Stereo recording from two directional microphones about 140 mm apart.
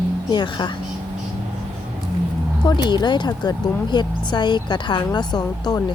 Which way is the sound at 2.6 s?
30° left (ahead or behind).